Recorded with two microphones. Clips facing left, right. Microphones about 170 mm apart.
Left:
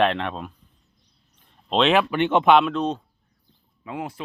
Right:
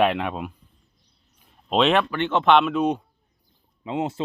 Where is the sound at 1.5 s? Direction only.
5° right (ahead or behind).